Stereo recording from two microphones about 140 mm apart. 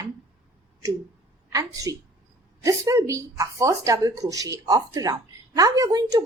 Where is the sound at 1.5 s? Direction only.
25° right (ahead or behind).